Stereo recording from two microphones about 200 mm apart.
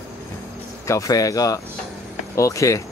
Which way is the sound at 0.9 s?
15° left (ahead or behind).